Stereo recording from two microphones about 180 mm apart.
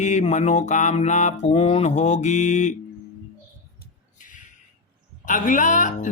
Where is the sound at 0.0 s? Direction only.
40° left (ahead or behind).